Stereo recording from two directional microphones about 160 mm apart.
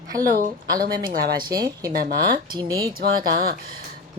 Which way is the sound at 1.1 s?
65° right (ahead or behind).